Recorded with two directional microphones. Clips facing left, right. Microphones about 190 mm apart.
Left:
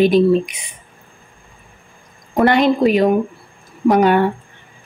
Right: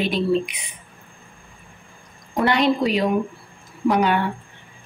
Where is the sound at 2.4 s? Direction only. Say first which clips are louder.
Left 6 dB; 50° left (ahead or behind).